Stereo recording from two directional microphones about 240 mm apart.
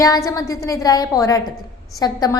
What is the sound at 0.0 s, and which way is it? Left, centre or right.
A woman's voice, centre.